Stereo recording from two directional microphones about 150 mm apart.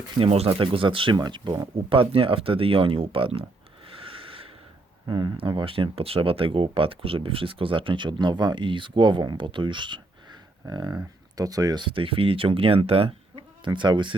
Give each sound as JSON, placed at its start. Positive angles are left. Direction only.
{"t": 0.2, "sound": "speech", "side_deg": -40}
{"t": 3.9, "sound": "a sound", "side_deg": -35}
{"t": 5.0, "sound": "speech", "side_deg": -30}